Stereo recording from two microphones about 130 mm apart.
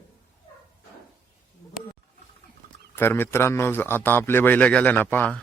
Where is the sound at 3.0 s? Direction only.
15° left (ahead or behind).